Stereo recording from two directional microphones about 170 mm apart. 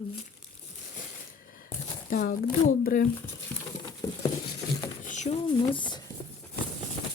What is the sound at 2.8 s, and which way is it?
Speech, 55° left (ahead or behind).